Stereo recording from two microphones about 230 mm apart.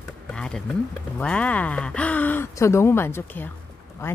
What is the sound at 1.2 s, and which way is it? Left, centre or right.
A woman's voice, centre.